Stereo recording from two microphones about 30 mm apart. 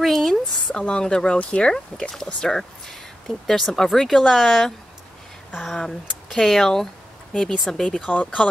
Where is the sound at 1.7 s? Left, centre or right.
Centre.